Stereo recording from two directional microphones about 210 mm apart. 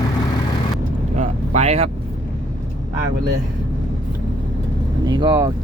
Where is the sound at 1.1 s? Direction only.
35° right (ahead or behind).